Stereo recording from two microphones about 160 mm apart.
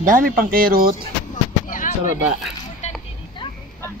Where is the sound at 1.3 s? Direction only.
55° left (ahead or behind).